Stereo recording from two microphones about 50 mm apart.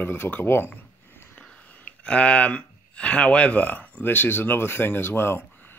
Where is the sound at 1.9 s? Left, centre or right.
Left.